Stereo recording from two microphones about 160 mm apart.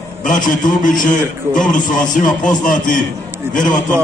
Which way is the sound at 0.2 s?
55° left (ahead or behind).